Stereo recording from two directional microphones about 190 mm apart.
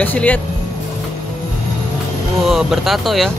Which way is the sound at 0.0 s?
10° left (ahead or behind).